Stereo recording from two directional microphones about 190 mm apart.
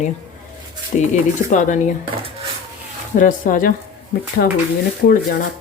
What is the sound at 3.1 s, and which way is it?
Speech, 45° left (ahead or behind).